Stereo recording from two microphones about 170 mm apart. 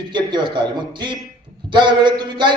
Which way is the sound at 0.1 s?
25° right (ahead or behind).